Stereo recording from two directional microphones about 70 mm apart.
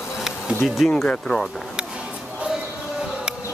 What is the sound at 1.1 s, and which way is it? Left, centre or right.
Speech, centre.